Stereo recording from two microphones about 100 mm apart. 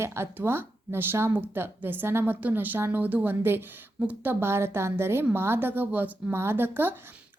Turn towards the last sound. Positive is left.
turn(degrees=-20)  # may be behind; listen again after turning